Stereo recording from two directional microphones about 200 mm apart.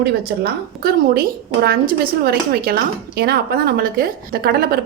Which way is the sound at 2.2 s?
50° right (ahead or behind).